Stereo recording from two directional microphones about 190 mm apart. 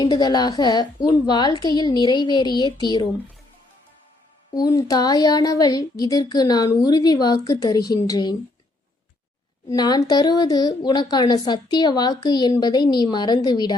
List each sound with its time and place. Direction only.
0.0 s a woman's voice: 20° left (ahead or behind)
4.5 s a woman's voice: 20° left (ahead or behind)
9.6 s a woman's voice: 20° left (ahead or behind)